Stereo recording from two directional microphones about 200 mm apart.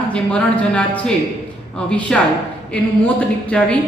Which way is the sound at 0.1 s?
5° left (ahead or behind).